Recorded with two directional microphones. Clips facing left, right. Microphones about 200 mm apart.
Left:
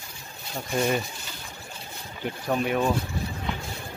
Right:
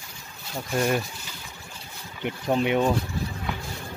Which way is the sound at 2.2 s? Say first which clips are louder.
Right 2 dB; 20° right (ahead or behind).